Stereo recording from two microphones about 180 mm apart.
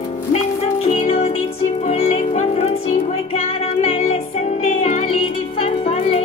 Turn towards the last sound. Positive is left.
turn(degrees=35)  # may be behind; listen again after turning